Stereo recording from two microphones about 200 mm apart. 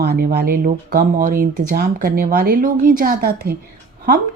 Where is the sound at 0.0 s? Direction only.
55° right (ahead or behind).